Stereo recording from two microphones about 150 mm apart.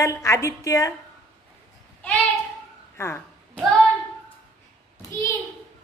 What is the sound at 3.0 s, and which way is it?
Speech, 15° left (ahead or behind).